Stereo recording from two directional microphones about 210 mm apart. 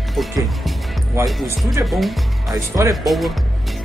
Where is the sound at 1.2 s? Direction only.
Centre (ahead or behind).